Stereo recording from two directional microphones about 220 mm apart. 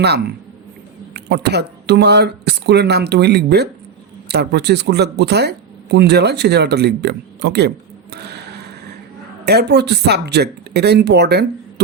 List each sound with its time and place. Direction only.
0.0 s speech: 50° right (ahead or behind)
8.1 s a sound: 50° right (ahead or behind)
9.5 s speech: 50° right (ahead or behind)